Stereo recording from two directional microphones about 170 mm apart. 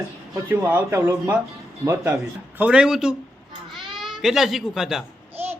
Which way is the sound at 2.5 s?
5° right (ahead or behind).